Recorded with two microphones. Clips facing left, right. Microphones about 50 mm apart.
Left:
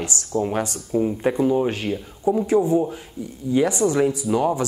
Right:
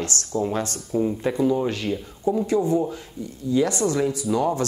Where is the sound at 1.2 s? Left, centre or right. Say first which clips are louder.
Left 3 dB; left.